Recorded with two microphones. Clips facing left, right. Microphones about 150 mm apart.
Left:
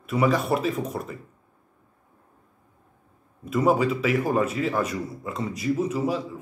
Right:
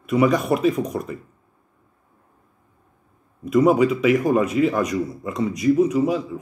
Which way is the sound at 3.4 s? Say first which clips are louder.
Right 5 dB; 15° right (ahead or behind).